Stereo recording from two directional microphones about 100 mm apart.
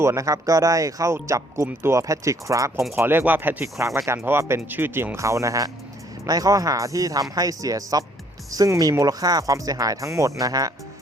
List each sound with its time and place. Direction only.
0.0 s speech: 30° right (ahead or behind)